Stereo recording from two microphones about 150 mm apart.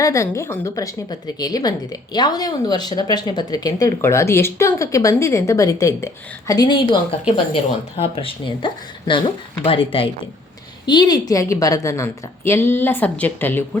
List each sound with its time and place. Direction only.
0.0 s a woman's voice: 20° left (ahead or behind)